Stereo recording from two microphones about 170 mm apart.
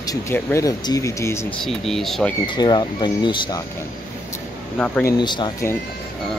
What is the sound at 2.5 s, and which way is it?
Speech, 25° left (ahead or behind).